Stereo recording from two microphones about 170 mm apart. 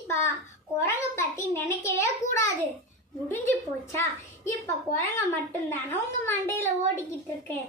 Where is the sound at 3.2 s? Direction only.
15° left (ahead or behind).